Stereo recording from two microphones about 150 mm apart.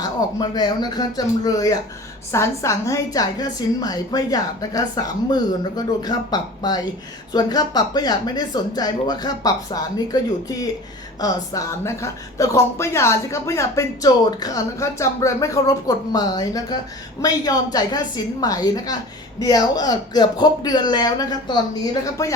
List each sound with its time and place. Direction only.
0.0 s a woman's voice: 25° left (ahead or behind)